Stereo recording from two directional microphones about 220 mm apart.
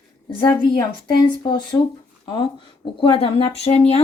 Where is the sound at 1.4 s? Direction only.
20° left (ahead or behind).